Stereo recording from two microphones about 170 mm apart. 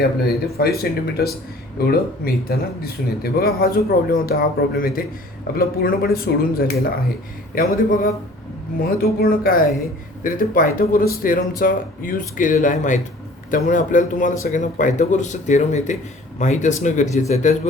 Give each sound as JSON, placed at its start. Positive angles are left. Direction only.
{"t": 0.2, "sound": "speech", "side_deg": 65}